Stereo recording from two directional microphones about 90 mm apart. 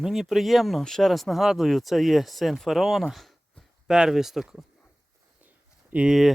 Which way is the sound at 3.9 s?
5° right (ahead or behind).